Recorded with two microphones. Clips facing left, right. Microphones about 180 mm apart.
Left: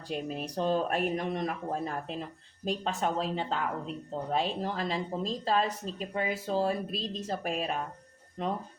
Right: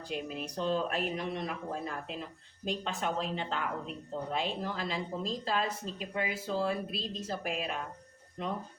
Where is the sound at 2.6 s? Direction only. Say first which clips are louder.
Left 3 dB; 40° left (ahead or behind).